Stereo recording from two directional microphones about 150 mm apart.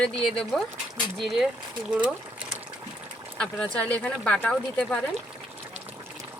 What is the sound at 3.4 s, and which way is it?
Speech, 5° left (ahead or behind).